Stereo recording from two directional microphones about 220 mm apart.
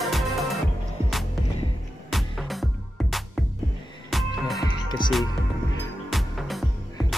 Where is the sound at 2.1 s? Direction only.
Centre (ahead or behind).